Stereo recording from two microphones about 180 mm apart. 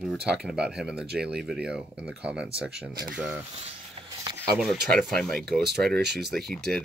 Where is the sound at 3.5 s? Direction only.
30° right (ahead or behind).